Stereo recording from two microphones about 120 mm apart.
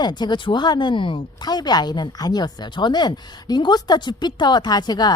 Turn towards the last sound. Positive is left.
turn(degrees=35)  # may be behind; listen again after turning